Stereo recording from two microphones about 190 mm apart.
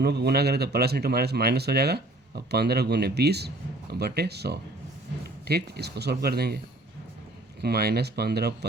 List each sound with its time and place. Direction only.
0.0 s speech: 60° right (ahead or behind)
7.6 s speech: 55° right (ahead or behind)